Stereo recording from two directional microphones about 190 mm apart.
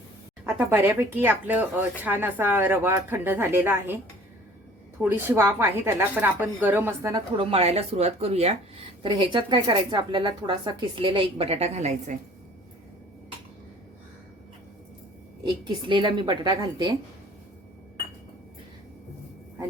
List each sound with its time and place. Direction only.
0.4 s speech: 10° right (ahead or behind)
5.0 s speech: 10° right (ahead or behind)
7.3 s speech: 30° right (ahead or behind)
15.4 s speech: 25° right (ahead or behind)